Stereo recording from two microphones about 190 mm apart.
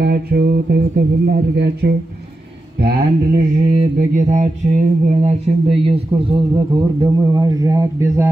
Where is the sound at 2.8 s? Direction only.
50° right (ahead or behind).